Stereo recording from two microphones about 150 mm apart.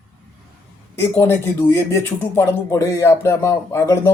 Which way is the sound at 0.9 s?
15° left (ahead or behind).